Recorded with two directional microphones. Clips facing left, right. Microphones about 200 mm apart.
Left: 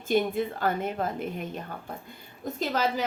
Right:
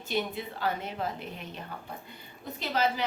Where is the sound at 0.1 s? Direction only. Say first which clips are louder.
Left 7 dB; 50° left (ahead or behind).